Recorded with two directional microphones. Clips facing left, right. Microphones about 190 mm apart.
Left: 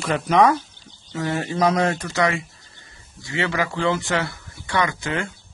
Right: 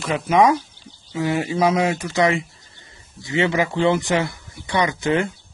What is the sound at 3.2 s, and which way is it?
Speech, 20° right (ahead or behind).